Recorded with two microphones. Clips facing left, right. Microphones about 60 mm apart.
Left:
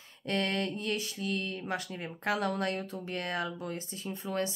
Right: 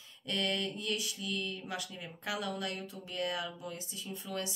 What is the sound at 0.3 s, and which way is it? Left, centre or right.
Speech, left.